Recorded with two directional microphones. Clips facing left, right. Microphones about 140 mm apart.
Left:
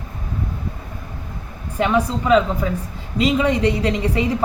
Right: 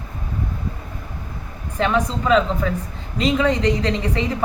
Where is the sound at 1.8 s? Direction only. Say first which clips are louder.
Left 1 dB; 10° left (ahead or behind).